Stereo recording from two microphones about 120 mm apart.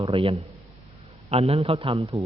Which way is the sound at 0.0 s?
45° right (ahead or behind).